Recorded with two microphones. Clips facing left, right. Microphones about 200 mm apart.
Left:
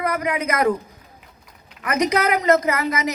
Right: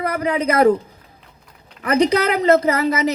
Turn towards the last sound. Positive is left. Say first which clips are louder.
# right 4 dB
turn(degrees=-30)  # may be behind; listen again after turning